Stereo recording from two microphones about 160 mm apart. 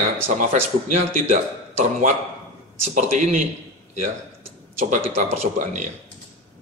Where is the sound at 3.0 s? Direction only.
50° right (ahead or behind).